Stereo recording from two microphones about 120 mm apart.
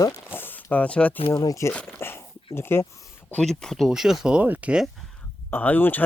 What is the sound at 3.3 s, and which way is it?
Speech, 5° left (ahead or behind).